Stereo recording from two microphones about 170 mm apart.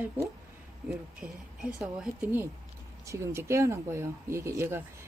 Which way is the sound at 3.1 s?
15° right (ahead or behind).